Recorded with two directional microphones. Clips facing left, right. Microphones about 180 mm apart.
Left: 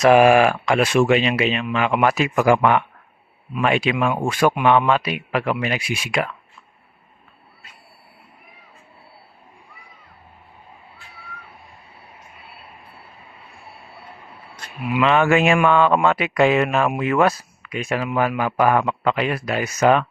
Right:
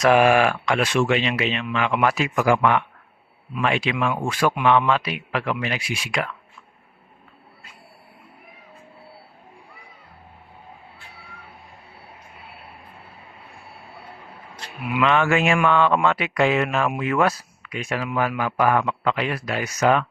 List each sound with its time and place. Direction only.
0.1 s a man's voice: 10° left (ahead or behind)
14.9 s speech: 5° left (ahead or behind)
15.2 s a man's voice: 20° left (ahead or behind)